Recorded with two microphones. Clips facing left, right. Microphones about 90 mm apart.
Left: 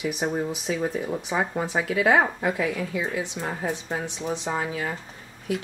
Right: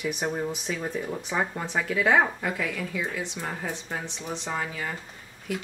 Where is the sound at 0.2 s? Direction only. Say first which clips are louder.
Left 2 dB; 5° left (ahead or behind).